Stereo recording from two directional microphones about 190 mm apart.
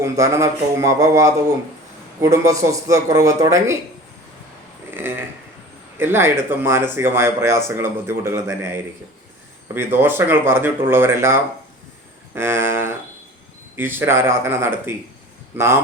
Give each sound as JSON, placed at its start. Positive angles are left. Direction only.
{"t": 0.0, "sound": "speech", "side_deg": -15}
{"t": 4.9, "sound": "a sound", "side_deg": -10}
{"t": 6.0, "sound": "speech", "side_deg": -10}